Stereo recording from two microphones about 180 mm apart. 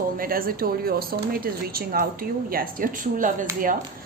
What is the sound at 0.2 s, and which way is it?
Speech, 55° right (ahead or behind).